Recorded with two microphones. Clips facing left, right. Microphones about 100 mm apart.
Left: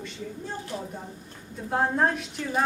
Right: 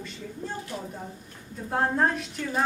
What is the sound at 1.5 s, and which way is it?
A woman's voice, centre (ahead or behind).